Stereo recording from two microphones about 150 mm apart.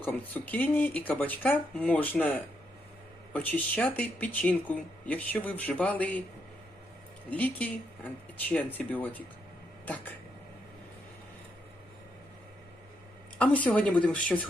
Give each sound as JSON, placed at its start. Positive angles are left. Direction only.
{"t": 0.0, "sound": "speech", "side_deg": 10}
{"t": 7.3, "sound": "speech", "side_deg": 10}
{"t": 9.8, "sound": "a sound", "side_deg": 10}
{"t": 13.4, "sound": "speech", "side_deg": 10}